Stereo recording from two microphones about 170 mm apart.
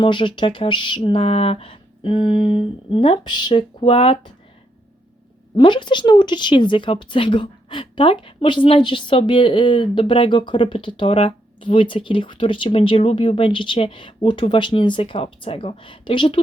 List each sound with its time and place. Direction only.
0.0 s speech: 30° left (ahead or behind)
5.5 s speech: 25° left (ahead or behind)